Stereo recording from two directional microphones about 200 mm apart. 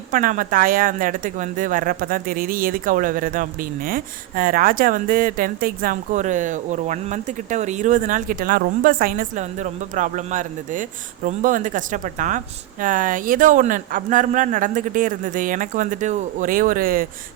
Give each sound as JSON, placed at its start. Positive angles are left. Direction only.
{"t": 0.1, "sound": "a man's voice", "side_deg": -40}